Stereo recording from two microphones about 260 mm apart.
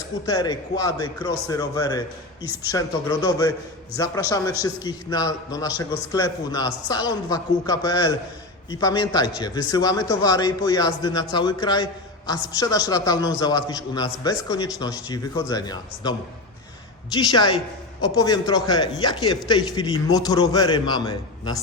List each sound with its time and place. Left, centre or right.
0.3 s a man's voice: centre
17.2 s a man's voice: centre